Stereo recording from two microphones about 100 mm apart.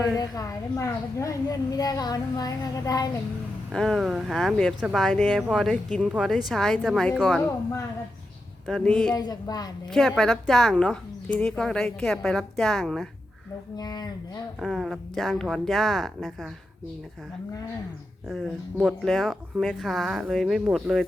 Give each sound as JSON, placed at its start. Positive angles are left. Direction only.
{"t": 0.2, "sound": "a woman's voice", "side_deg": 35}
{"t": 3.7, "sound": "speech", "side_deg": 5}
{"t": 5.4, "sound": "speech", "side_deg": -5}
{"t": 5.7, "sound": "speech", "side_deg": 5}
{"t": 8.6, "sound": "speech", "side_deg": 5}
{"t": 9.1, "sound": "speech", "side_deg": 45}
{"t": 10.2, "sound": "speech", "side_deg": 5}
{"t": 13.7, "sound": "speech", "side_deg": 40}
{"t": 14.6, "sound": "speech", "side_deg": 0}
{"t": 18.3, "sound": "speech", "side_deg": -5}